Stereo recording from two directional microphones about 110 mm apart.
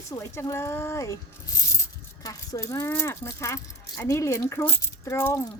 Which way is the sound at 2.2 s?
30° left (ahead or behind).